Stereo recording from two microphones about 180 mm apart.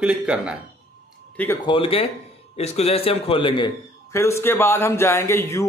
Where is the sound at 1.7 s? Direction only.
30° left (ahead or behind).